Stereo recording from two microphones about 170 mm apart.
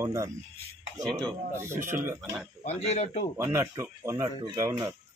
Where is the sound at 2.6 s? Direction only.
40° left (ahead or behind).